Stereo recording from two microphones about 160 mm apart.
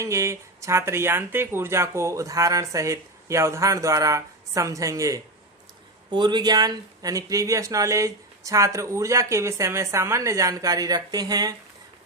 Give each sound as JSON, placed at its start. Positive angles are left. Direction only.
{"t": 0.0, "sound": "speech", "side_deg": -20}